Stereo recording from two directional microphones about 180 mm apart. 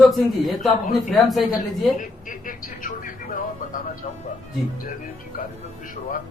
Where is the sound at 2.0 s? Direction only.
50° left (ahead or behind).